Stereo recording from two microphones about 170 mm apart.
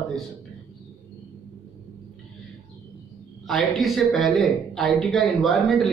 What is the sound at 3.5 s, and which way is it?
Speech, centre (ahead or behind).